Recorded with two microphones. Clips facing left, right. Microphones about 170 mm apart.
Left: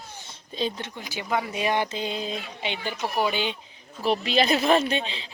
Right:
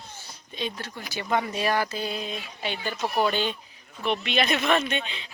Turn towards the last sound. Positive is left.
turn(degrees=30)  # may be behind; listen again after turning